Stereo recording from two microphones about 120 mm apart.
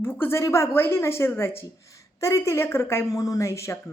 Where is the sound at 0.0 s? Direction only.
20° left (ahead or behind).